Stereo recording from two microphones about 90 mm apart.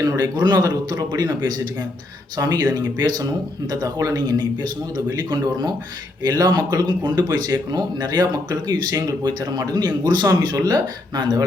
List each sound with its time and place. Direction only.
0.0 s speech: 45° right (ahead or behind)